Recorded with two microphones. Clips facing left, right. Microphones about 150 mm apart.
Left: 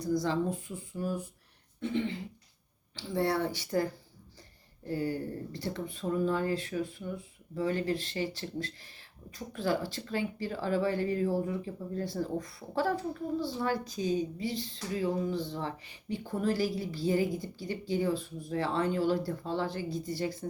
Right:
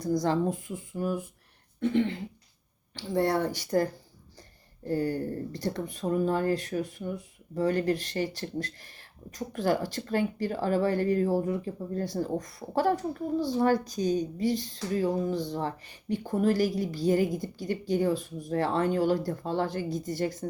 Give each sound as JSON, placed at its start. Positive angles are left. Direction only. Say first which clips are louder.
{"t": 0.0, "sound": "speech", "louder": "right 3 dB", "side_deg": -45}
{"t": 1.8, "sound": "speech", "louder": "right 6 dB", "side_deg": -55}
{"t": 2.9, "sound": "speech", "louder": "right 4 dB", "side_deg": -45}
{"t": 4.9, "sound": "speech", "louder": "right 4 dB", "side_deg": -45}